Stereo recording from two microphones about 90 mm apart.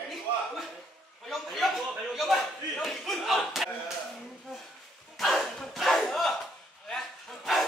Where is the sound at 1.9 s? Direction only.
Centre (ahead or behind).